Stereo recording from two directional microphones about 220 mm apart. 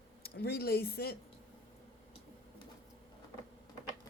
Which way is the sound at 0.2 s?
45° left (ahead or behind).